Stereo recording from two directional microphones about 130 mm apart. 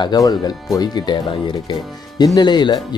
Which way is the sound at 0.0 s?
30° left (ahead or behind).